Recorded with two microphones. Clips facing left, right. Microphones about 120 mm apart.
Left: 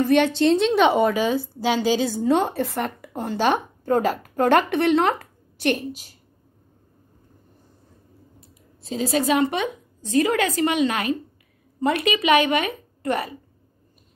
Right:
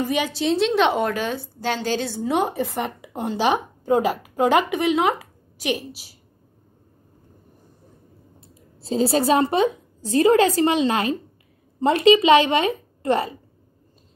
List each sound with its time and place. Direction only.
0.0 s a woman's voice: 10° right (ahead or behind)
2.3 s a woman's voice: 15° right (ahead or behind)
8.4 s a woman's voice: 30° right (ahead or behind)